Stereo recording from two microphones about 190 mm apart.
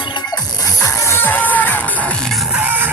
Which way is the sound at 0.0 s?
25° left (ahead or behind).